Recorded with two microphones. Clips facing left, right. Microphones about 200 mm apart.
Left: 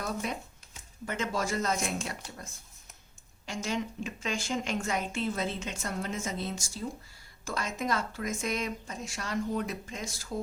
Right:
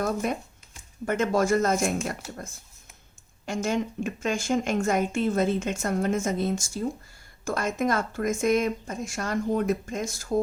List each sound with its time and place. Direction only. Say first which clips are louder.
0.0 s speech: right 7 dB; 50° right (ahead or behind)
3.4 s speech: right 6 dB; 50° right (ahead or behind)